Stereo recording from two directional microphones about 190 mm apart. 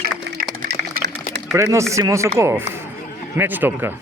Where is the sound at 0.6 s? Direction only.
60° right (ahead or behind).